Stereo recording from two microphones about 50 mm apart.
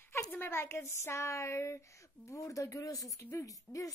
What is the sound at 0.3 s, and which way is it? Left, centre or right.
A woman's voice, left.